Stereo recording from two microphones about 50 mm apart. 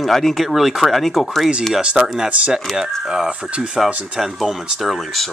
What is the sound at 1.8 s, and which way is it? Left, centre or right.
Speech, centre.